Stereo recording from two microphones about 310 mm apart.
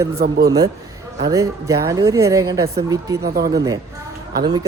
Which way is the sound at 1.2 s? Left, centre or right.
Centre.